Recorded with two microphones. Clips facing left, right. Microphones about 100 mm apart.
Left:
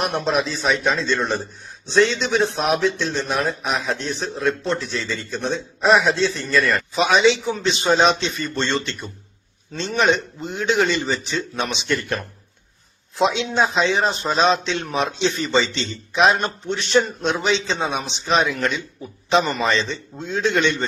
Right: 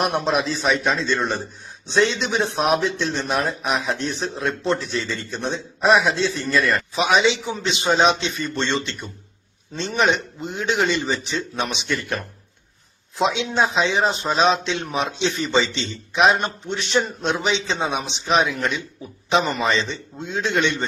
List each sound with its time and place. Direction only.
0.1 s speech: centre (ahead or behind)
3.2 s speech: 20° right (ahead or behind)
3.6 s a man's voice: centre (ahead or behind)